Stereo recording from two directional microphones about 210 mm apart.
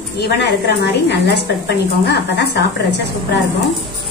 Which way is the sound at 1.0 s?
55° left (ahead or behind).